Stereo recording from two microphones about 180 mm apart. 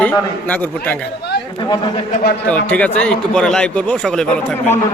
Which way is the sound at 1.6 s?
25° left (ahead or behind).